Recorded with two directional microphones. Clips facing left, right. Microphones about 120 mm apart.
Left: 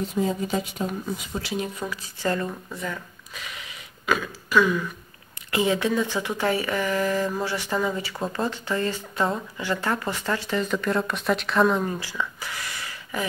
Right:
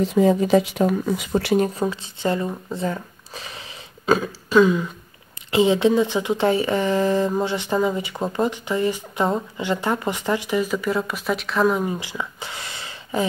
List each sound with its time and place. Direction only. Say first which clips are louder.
0.0 s speech: right 8 dB; 90° right; by 1.7 s 60° right (ahead or behind)
1.8 s speech: right 7 dB; 25° right (ahead or behind); by 11.8 s centre (ahead or behind)
11.8 s a sound: right 2 dB; 15° right (ahead or behind)